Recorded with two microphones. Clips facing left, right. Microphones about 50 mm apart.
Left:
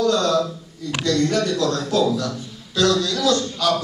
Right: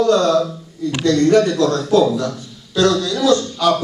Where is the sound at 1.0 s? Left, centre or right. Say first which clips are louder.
Right 7 dB; right.